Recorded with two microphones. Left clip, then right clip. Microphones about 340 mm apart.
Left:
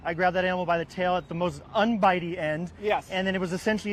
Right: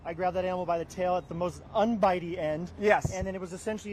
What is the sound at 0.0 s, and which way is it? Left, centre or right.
A man's voice, left.